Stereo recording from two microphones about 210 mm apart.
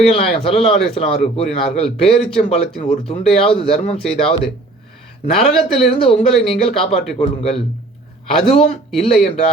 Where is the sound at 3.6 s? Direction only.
30° left (ahead or behind).